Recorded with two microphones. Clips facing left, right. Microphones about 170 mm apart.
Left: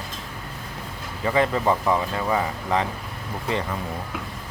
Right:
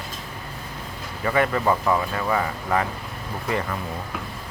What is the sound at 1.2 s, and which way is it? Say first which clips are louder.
Speech: even; 25° left (ahead or behind).